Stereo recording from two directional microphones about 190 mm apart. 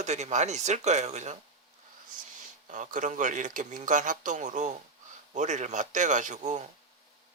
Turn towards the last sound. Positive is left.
turn(degrees=-40)  # may be behind; listen again after turning